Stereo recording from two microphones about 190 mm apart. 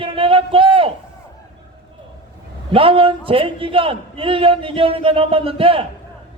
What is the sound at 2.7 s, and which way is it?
A man's voice, 30° right (ahead or behind).